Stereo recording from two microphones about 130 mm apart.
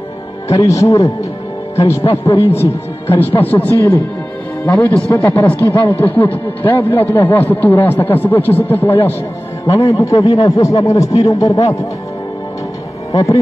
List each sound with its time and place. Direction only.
0.5 s speech: 25° left (ahead or behind)
2.0 s a man's voice: 45° left (ahead or behind)
3.3 s a man's voice: 15° left (ahead or behind)
13.1 s speech: 25° left (ahead or behind)